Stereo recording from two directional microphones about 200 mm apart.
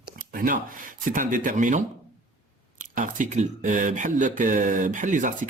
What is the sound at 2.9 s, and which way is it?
Speech, 40° right (ahead or behind).